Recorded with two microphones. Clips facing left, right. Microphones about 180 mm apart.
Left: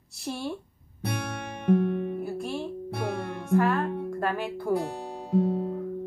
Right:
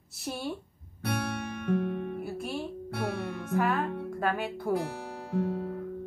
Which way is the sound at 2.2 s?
Centre (ahead or behind).